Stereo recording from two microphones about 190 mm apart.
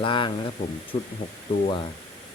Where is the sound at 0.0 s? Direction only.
25° left (ahead or behind).